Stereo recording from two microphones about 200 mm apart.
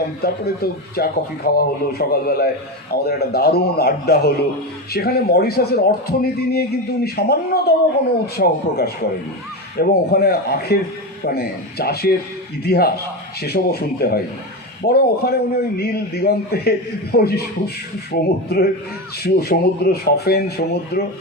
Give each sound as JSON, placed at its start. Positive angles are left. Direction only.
{"t": 0.2, "sound": "a man's voice", "side_deg": 50}